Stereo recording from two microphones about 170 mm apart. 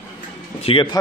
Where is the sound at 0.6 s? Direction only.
30° left (ahead or behind).